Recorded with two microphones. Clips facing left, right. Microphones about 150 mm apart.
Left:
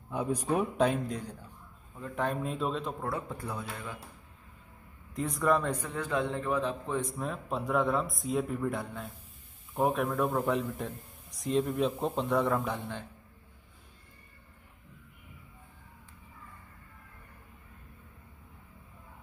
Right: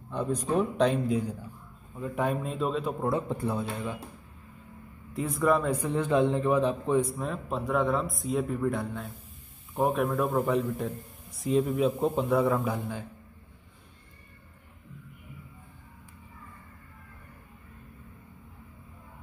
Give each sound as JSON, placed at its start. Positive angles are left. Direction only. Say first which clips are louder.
{"t": 0.1, "sound": "a man's voice", "louder": "right 2 dB", "side_deg": 10}
{"t": 3.0, "sound": "a man's voice", "louder": "right 7 dB", "side_deg": -25}
{"t": 5.1, "sound": "a man's voice", "louder": "right 2 dB", "side_deg": 0}
{"t": 5.9, "sound": "a man's voice", "louder": "right 7 dB", "side_deg": -20}
{"t": 7.2, "sound": "a man's voice", "louder": "right 2 dB", "side_deg": 0}